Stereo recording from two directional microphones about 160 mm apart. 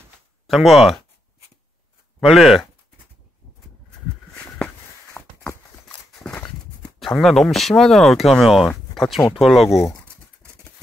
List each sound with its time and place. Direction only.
0.5 s speech: centre (ahead or behind)
2.1 s speech: centre (ahead or behind)
5.1 s a sound: 10° left (ahead or behind)
7.0 s speech: centre (ahead or behind)
9.8 s speech: 15° left (ahead or behind)